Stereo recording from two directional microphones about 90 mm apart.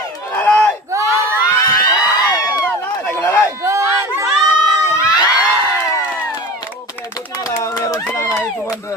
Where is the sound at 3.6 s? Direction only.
35° right (ahead or behind).